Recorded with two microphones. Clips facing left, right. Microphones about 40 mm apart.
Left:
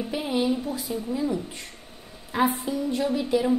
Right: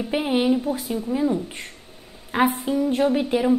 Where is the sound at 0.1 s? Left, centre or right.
Right.